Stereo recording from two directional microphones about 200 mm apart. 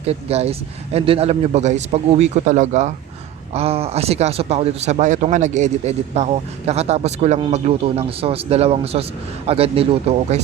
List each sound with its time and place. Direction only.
0.0 s speech: 30° right (ahead or behind)